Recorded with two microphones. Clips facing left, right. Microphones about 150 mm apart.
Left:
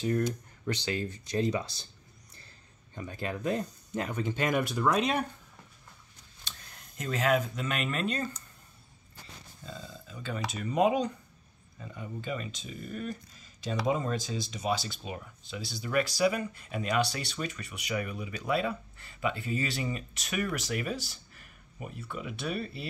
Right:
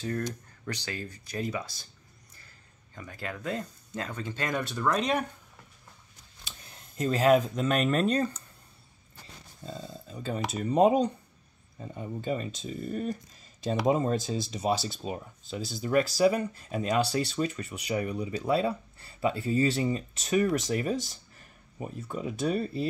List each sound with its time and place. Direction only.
0.0 s speech: 15° left (ahead or behind)
2.9 s speech: 25° left (ahead or behind); by 5.2 s 5° left (ahead or behind)
7.0 s speech: 35° right (ahead or behind)
9.6 s speech: 30° right (ahead or behind)